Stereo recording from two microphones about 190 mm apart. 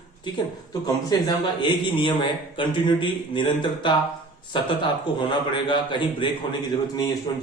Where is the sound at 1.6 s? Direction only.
25° left (ahead or behind).